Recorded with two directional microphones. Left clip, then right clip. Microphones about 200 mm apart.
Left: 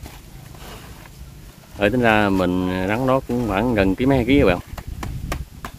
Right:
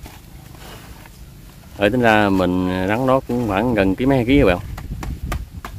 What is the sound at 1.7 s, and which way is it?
Speech, 10° right (ahead or behind).